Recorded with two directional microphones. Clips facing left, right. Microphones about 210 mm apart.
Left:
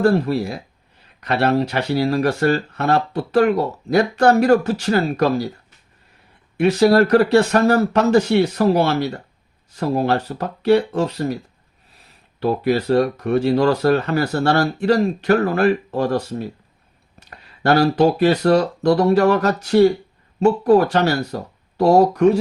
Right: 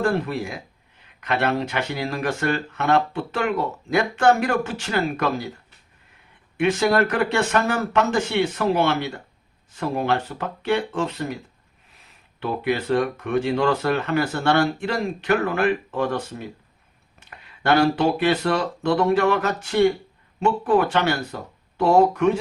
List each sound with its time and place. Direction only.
0.0 s speech: 35° left (ahead or behind)
6.6 s speech: 35° left (ahead or behind)